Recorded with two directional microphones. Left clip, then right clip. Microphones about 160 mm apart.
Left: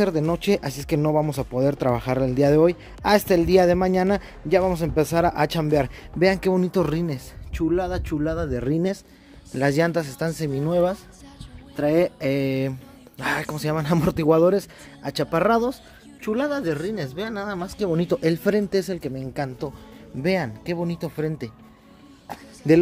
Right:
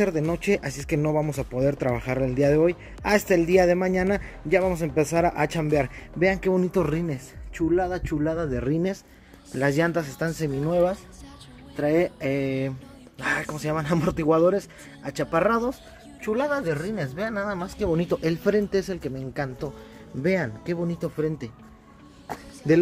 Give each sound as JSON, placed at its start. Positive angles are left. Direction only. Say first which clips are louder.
{"t": 0.0, "sound": "speech", "louder": "left 2 dB", "side_deg": 25}
{"t": 6.5, "sound": "speech", "louder": "left 1 dB", "side_deg": 20}
{"t": 11.7, "sound": "speech", "louder": "left 2 dB", "side_deg": 25}